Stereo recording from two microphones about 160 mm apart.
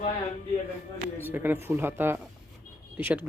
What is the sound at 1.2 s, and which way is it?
Speech, 10° right (ahead or behind).